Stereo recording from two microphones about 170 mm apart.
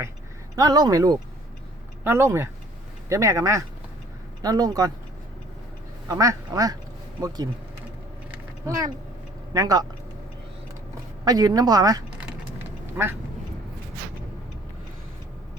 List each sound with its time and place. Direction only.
0.5 s speech: 20° right (ahead or behind)
6.1 s speech: 20° right (ahead or behind)
8.3 s a sound: 20° right (ahead or behind)
9.5 s speech: 20° right (ahead or behind)
11.3 s speech: 25° right (ahead or behind)